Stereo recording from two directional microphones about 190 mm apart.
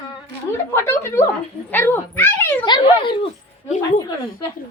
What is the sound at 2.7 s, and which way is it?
Dog, 25° left (ahead or behind).